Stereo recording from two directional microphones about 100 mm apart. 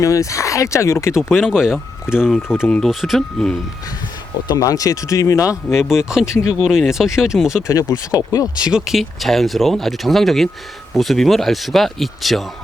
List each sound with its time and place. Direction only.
0.0 s speech: 30° left (ahead or behind)
1.1 s speech: 5° right (ahead or behind)
4.4 s speech: 40° left (ahead or behind)
5.7 s speech: 5° right (ahead or behind)
6.3 s speech: 30° left (ahead or behind)
6.6 s speech: 5° right (ahead or behind)
7.7 s speech: 35° left (ahead or behind)
8.6 s speech: 5° right (ahead or behind)